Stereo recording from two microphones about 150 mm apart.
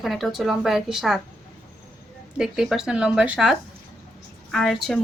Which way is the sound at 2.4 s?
5° right (ahead or behind).